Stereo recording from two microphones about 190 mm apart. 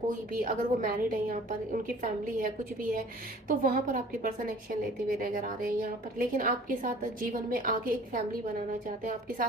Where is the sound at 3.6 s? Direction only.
45° right (ahead or behind).